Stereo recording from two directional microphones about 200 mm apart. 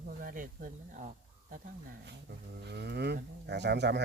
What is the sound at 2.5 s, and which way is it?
Speech, 55° right (ahead or behind).